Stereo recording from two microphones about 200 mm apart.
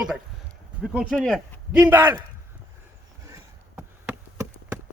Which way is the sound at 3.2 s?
15° right (ahead or behind).